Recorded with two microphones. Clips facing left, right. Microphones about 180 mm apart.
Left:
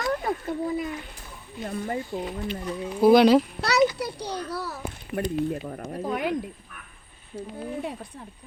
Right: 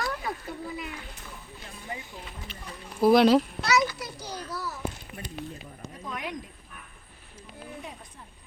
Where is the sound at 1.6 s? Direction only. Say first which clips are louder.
Left 12 dB; 50° left (ahead or behind).